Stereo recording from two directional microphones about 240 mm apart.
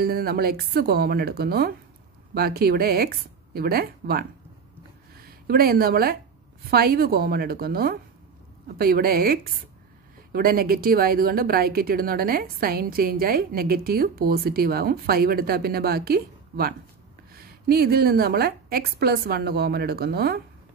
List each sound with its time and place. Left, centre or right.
0.0 s a woman's voice: right